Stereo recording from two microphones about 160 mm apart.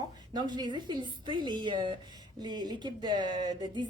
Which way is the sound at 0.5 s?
25° right (ahead or behind).